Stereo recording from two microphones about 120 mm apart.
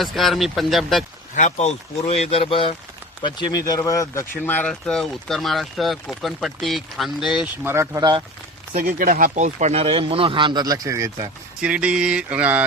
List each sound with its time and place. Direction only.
0.0 s speech: centre (ahead or behind)
1.4 s speech: 75° left (ahead or behind); by 2.7 s 50° left (ahead or behind)
3.2 s speech: 35° left (ahead or behind); by 4.7 s 15° left (ahead or behind)
4.7 s speech: 5° left (ahead or behind)
7.6 s speech: 20° right (ahead or behind)
9.2 s speech: 90° right
9.8 s speech: 50° right (ahead or behind); by 11.3 s 25° right (ahead or behind)
11.6 s mantra: 10° right (ahead or behind)